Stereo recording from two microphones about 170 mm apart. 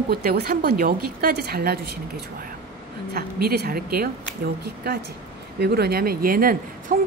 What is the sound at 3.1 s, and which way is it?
Speech, 65° right (ahead or behind).